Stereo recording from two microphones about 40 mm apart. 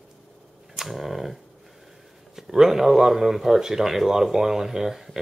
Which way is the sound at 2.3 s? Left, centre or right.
Centre.